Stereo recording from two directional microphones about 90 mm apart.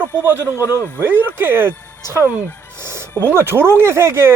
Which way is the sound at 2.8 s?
30° right (ahead or behind).